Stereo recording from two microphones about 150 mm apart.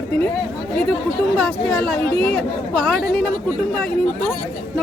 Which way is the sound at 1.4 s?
Centre (ahead or behind).